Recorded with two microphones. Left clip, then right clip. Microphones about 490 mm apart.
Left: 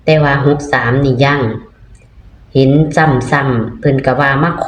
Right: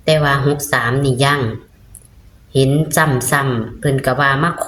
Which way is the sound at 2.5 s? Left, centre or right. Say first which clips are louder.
Left 5 dB; right.